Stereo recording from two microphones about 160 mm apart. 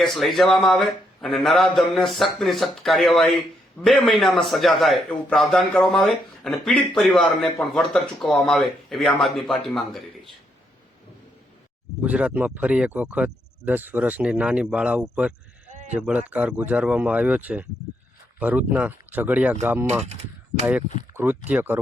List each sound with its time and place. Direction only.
0.0 s a man's voice: centre (ahead or behind)
12.0 s speech: 10° right (ahead or behind)
15.7 s sheep: 50° right (ahead or behind)
16.0 s speech: 5° right (ahead or behind)
21.2 s speech: 10° right (ahead or behind)